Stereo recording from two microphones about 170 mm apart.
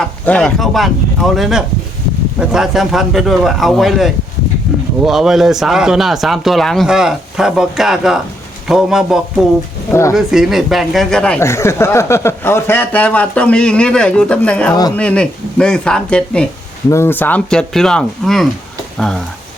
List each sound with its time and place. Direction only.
0.3 s speech: 5° left (ahead or behind)
9.9 s speech: 15° left (ahead or behind)
10.2 s speech: centre (ahead or behind)